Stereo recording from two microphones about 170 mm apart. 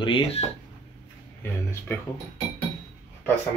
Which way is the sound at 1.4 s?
15° left (ahead or behind).